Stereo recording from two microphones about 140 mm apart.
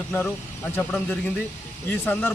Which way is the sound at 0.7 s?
10° left (ahead or behind).